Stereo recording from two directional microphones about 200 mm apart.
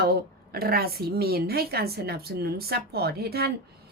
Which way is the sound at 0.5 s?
50° right (ahead or behind).